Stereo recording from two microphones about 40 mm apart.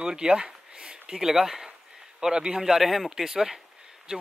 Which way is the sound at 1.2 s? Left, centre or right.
Centre.